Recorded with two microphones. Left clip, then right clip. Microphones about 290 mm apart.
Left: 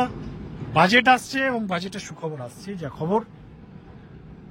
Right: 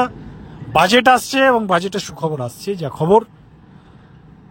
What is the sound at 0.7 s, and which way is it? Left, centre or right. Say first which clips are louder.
Speech: right 5 dB; centre.